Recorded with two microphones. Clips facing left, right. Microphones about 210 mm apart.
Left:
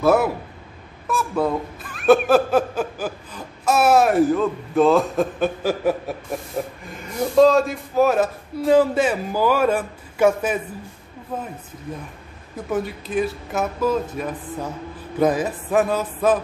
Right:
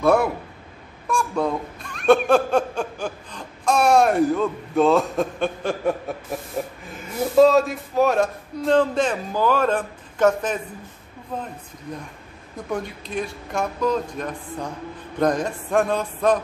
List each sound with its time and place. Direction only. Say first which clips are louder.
0.0 s speech: left 1 dB; 5° left (ahead or behind)
12.5 s speech: left 3 dB; 5° left (ahead or behind)